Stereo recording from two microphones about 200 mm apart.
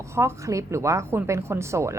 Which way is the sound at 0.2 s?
15° right (ahead or behind).